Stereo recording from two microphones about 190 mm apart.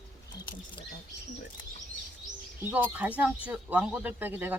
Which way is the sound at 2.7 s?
10° right (ahead or behind).